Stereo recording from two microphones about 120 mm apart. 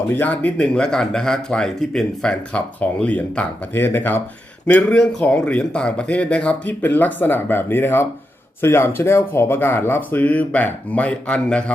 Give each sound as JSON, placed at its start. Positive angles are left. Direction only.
{"t": 0.1, "sound": "speech", "side_deg": 15}